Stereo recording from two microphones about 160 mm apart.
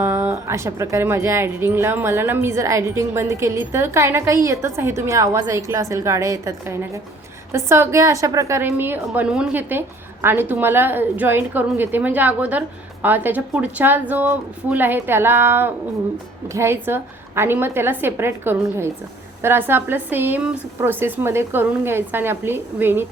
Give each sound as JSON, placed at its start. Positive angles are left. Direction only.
{"t": 0.0, "sound": "a woman's voice", "side_deg": -15}